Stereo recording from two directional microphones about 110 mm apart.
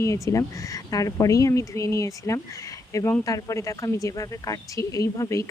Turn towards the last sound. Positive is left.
turn(degrees=30)  # may be behind; listen again after turning